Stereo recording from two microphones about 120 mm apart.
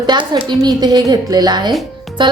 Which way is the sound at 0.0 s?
40° right (ahead or behind).